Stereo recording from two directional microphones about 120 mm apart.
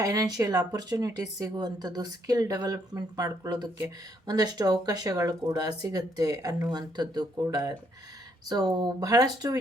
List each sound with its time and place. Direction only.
0.0 s speech: 30° right (ahead or behind)
8.4 s speech: 35° right (ahead or behind)